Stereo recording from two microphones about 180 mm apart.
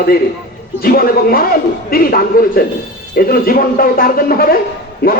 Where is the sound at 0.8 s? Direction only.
55° left (ahead or behind).